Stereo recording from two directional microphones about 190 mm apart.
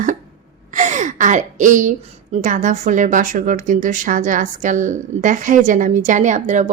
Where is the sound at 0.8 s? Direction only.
40° right (ahead or behind).